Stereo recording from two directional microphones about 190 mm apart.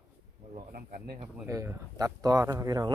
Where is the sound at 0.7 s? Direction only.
50° right (ahead or behind).